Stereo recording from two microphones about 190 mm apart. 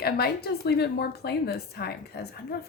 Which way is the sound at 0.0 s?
55° left (ahead or behind).